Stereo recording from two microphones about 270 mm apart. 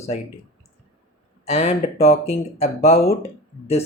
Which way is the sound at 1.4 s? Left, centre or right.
Left.